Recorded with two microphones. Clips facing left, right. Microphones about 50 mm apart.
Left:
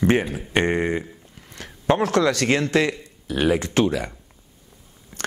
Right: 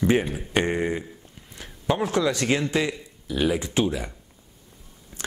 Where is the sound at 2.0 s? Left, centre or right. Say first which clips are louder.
Left 2 dB; left.